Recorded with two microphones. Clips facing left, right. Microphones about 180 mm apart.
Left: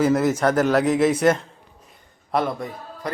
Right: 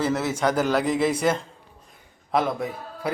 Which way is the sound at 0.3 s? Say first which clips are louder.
Left 3 dB; 5° left (ahead or behind).